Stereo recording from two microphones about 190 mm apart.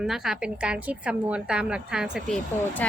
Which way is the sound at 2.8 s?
10° left (ahead or behind).